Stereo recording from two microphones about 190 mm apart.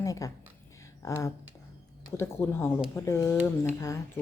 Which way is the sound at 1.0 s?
15° left (ahead or behind).